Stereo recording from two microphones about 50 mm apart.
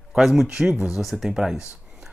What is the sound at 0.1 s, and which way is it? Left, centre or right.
Speech, centre.